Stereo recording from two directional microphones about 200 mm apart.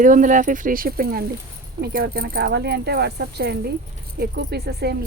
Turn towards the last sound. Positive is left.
turn(degrees=-55)  # may be behind; listen again after turning